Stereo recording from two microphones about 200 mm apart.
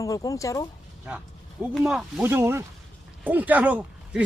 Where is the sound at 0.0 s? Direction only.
15° left (ahead or behind).